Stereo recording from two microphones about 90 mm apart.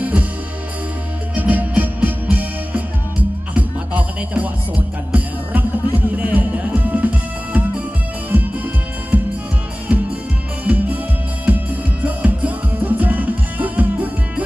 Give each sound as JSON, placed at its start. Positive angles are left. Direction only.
{"t": 0.0, "sound": "music", "side_deg": -15}
{"t": 1.3, "sound": "music", "side_deg": -20}
{"t": 9.1, "sound": "music", "side_deg": -20}
{"t": 10.6, "sound": "music", "side_deg": -15}